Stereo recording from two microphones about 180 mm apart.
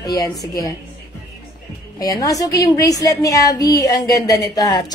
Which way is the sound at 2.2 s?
20° left (ahead or behind).